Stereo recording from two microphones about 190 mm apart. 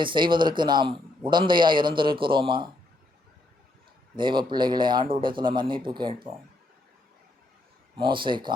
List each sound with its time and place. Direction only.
0.0 s a man's voice: 25° right (ahead or behind)
4.2 s a man's voice: 25° right (ahead or behind)
7.9 s a man's voice: 25° right (ahead or behind)